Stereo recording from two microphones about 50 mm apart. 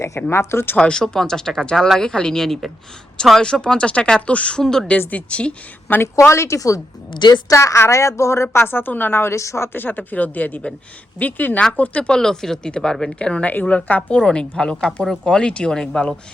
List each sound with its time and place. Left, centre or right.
0.3 s speech: left
0.8 s speech: centre
4.6 s speech: centre
5.1 s speech: left
6.1 s a woman's voice: left
8.6 s a woman's voice: left
9.3 s a woman's voice: left
9.7 s speech: left
11.8 s speech: left
13.5 s speech: left
14.3 s speech: centre